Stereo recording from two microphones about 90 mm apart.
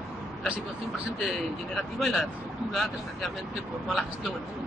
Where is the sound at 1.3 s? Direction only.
Centre (ahead or behind).